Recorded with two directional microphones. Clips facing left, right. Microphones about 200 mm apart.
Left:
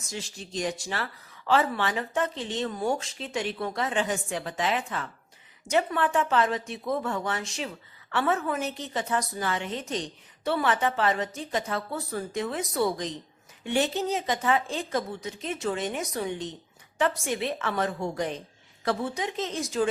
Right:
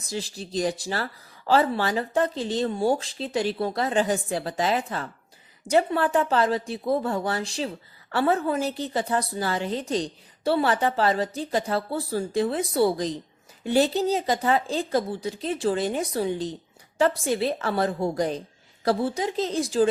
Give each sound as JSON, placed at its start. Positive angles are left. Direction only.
{"t": 0.0, "sound": "a woman's voice", "side_deg": -35}